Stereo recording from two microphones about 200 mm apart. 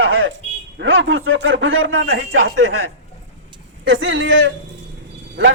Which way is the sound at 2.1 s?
55° right (ahead or behind).